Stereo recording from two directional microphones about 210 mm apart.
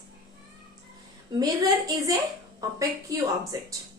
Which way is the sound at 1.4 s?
15° right (ahead or behind).